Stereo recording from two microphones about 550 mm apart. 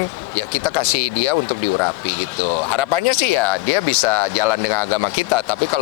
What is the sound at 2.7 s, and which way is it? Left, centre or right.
Speech, left.